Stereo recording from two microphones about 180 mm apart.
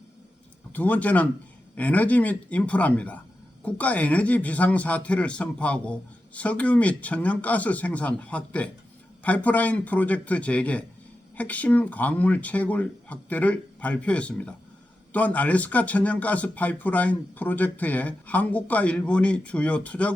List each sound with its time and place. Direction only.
0.7 s speech: 10° left (ahead or behind)